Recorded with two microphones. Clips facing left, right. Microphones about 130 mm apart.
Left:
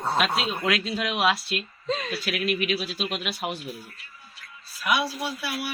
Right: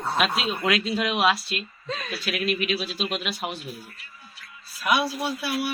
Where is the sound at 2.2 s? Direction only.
5° left (ahead or behind).